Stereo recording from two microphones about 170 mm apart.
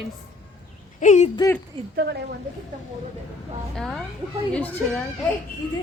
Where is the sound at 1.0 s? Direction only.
45° left (ahead or behind).